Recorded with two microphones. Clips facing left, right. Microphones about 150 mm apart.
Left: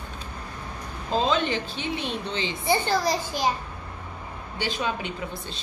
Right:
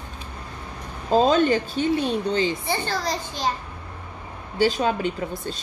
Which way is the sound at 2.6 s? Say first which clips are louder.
Left 3 dB; 15° left (ahead or behind).